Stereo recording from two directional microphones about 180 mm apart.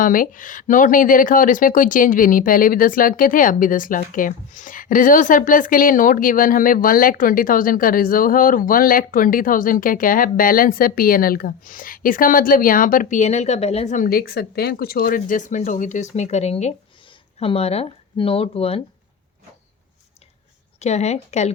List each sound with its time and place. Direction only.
0.0 s speech: 50° left (ahead or behind); by 18.8 s 35° left (ahead or behind)
20.7 s speech: 40° left (ahead or behind)